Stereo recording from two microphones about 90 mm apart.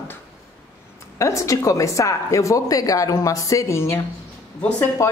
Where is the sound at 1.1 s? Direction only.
35° left (ahead or behind).